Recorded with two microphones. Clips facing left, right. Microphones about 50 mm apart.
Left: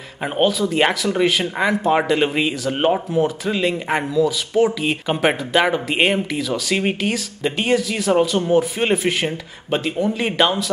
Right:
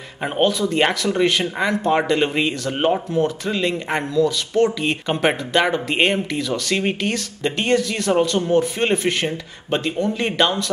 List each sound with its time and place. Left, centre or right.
0.2 s speech: centre